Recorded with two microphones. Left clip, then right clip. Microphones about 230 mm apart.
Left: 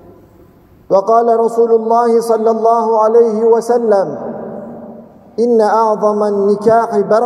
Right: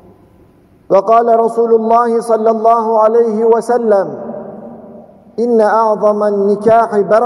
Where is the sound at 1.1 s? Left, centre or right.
Right.